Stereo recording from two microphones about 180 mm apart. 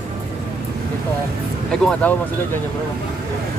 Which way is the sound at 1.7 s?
5° left (ahead or behind).